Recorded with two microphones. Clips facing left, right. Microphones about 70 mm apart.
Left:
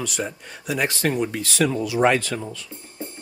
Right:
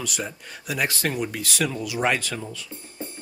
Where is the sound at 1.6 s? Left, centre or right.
Left.